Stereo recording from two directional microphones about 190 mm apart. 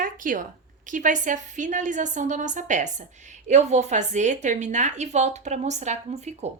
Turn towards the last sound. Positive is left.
turn(degrees=-35)  # may be behind; listen again after turning